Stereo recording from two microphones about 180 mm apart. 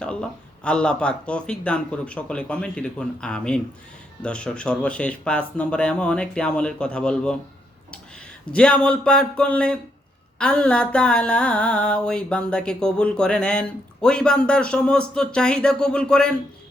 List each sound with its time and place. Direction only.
0.0 s mantra: 5° left (ahead or behind)
8.5 s speech: 5° left (ahead or behind)
10.3 s mantra: 5° left (ahead or behind)